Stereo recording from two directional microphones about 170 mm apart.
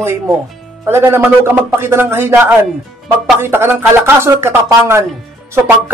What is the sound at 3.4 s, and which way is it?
Speech, 15° right (ahead or behind).